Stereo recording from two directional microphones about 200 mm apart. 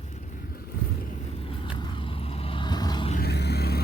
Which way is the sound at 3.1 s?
55° left (ahead or behind).